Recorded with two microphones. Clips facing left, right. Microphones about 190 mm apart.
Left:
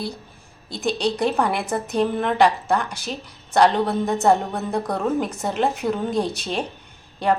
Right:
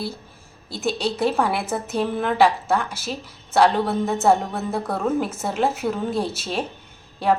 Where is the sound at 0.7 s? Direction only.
Centre (ahead or behind).